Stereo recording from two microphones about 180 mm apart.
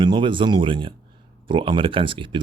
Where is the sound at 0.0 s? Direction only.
25° right (ahead or behind).